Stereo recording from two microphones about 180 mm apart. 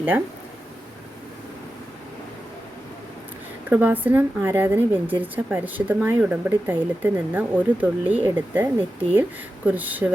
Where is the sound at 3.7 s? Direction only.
10° right (ahead or behind).